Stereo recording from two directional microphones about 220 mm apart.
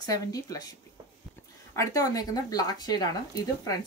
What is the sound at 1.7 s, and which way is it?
Speech, 15° left (ahead or behind).